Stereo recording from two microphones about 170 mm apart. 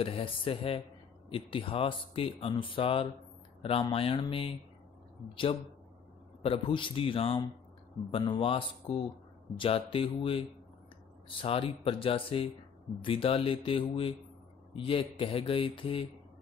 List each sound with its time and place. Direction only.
0.0 s speech: 30° left (ahead or behind)